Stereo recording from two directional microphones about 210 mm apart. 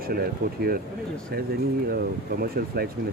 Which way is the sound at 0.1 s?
45° right (ahead or behind).